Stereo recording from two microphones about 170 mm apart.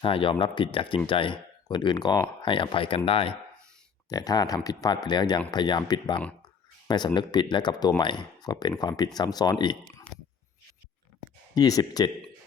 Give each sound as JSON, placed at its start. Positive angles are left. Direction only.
{"t": 0.0, "sound": "speech", "side_deg": 30}
{"t": 4.1, "sound": "speech", "side_deg": 20}
{"t": 11.5, "sound": "speech", "side_deg": 20}